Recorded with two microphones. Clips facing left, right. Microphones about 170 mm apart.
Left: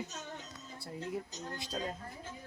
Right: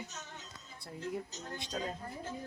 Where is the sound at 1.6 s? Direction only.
Centre (ahead or behind).